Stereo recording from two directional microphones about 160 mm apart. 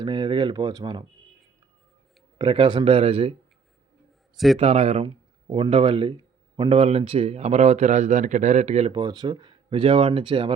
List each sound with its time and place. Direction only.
0.0 s speech: 30° right (ahead or behind)
2.4 s speech: 30° right (ahead or behind)
4.5 s a man's voice: 40° right (ahead or behind)
8.9 s speech: 25° right (ahead or behind)